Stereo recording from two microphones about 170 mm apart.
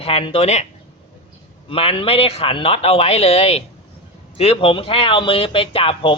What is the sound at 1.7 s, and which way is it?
Speech, 35° left (ahead or behind).